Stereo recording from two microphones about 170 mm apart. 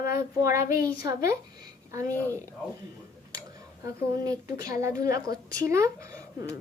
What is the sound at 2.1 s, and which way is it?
Speech, 10° left (ahead or behind).